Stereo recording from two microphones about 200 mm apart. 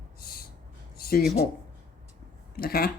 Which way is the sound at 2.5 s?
50° left (ahead or behind).